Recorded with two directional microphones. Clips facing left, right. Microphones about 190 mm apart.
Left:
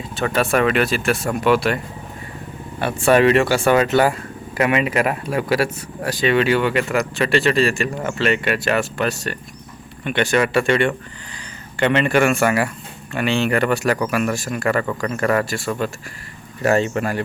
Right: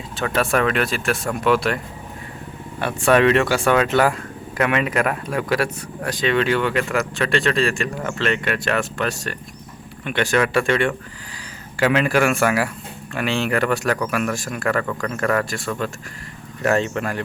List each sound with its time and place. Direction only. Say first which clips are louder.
0.2 s speech: left 2 dB; centre (ahead or behind)
2.8 s speech: left 1 dB; centre (ahead or behind)